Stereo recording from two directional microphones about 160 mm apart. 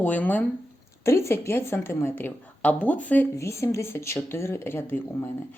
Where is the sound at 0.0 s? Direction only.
10° left (ahead or behind).